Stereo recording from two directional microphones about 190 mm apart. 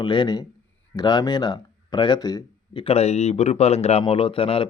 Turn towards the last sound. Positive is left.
turn(degrees=30)  # may be behind; listen again after turning